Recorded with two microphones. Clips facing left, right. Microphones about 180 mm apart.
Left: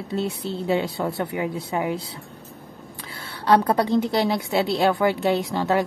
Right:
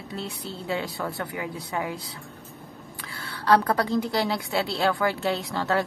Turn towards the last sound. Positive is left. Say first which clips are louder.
# left 4 dB
turn(degrees=20)  # may be behind; listen again after turning